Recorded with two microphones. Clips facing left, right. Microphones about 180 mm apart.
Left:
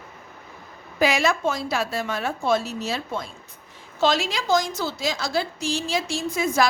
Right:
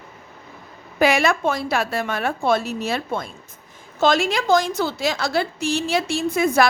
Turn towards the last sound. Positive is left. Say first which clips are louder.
# right 5 dB
turn(degrees=-60)  # may be behind; listen again after turning